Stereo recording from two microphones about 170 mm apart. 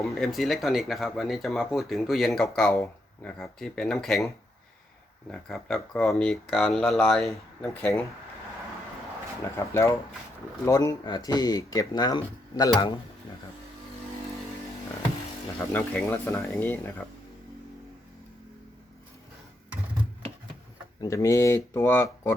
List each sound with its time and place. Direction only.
0.0 s speech: centre (ahead or behind)
5.3 s speech: 5° left (ahead or behind)
9.6 s speech: 15° left (ahead or behind)
15.7 s speech: 10° left (ahead or behind)
21.0 s speech: 20° left (ahead or behind)